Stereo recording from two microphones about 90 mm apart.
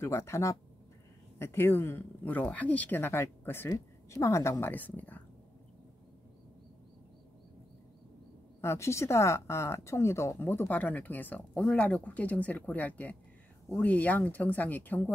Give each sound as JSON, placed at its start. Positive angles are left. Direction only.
{"t": 0.0, "sound": "speech", "side_deg": 30}
{"t": 8.5, "sound": "speech", "side_deg": 30}